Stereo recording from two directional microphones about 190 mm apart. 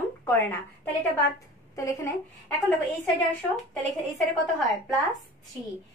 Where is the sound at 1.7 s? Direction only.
15° left (ahead or behind).